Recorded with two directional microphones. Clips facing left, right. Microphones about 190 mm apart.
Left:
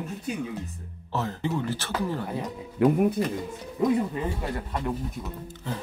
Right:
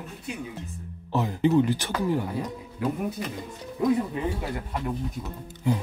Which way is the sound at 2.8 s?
65° left (ahead or behind).